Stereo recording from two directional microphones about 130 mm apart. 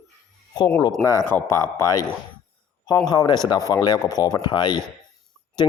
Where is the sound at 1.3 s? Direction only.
20° left (ahead or behind).